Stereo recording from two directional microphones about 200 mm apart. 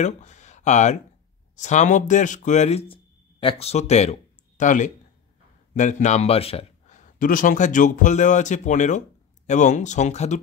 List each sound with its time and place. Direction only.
0.0 s speech: 35° left (ahead or behind)